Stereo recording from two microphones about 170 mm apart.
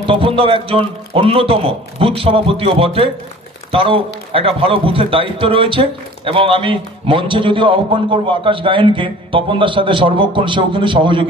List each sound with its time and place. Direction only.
0.0 s a man's voice: 30° right (ahead or behind)